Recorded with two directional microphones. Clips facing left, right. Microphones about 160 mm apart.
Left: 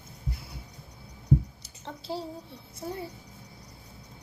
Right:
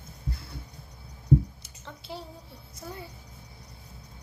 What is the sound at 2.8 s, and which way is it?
Speech, 30° left (ahead or behind).